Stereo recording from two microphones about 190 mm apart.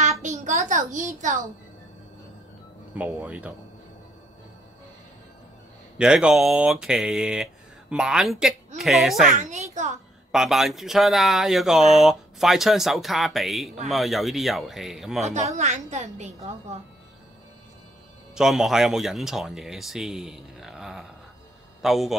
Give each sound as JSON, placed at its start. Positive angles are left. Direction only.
{"t": 0.0, "sound": "a sound", "side_deg": -40}
{"t": 3.0, "sound": "speech", "side_deg": -10}
{"t": 5.9, "sound": "speech", "side_deg": -5}
{"t": 9.4, "sound": "a child's voice", "side_deg": -40}
{"t": 10.3, "sound": "speech", "side_deg": 0}
{"t": 15.2, "sound": "a woman's voice", "side_deg": -35}
{"t": 18.3, "sound": "speech", "side_deg": 0}